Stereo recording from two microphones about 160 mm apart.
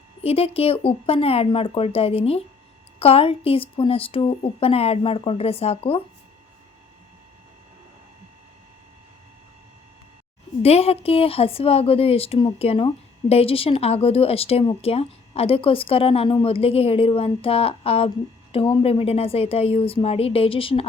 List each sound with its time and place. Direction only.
0.2 s speech: 40° left (ahead or behind)
10.6 s speech: 40° left (ahead or behind)